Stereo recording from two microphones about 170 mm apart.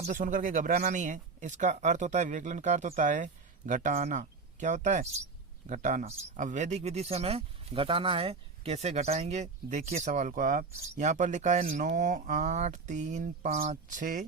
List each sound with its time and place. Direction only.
0.1 s speech: 50° right (ahead or behind)